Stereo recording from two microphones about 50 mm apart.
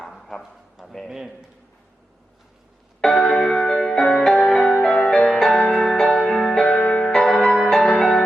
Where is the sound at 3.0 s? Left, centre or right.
Centre.